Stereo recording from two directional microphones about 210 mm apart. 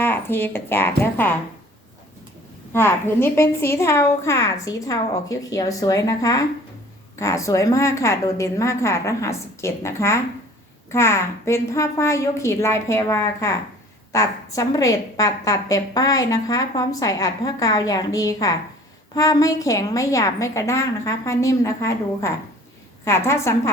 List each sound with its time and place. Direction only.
0.0 s speech: 10° left (ahead or behind)
2.7 s a woman's voice: 10° left (ahead or behind)